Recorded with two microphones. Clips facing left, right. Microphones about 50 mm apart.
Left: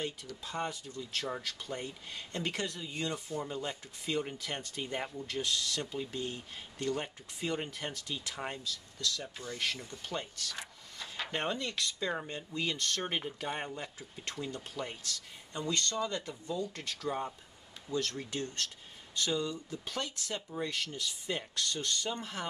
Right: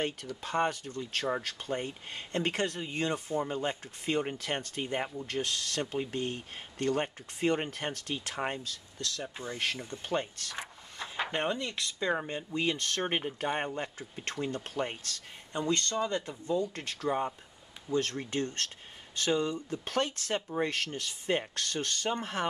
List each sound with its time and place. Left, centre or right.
0.4 s speech: right
8.4 s speech: right
9.2 s speech: right
11.3 s speech: centre
11.7 s speech: right
13.7 s speech: right